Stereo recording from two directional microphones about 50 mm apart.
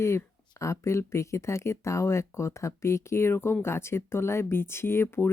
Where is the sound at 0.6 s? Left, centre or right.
Left.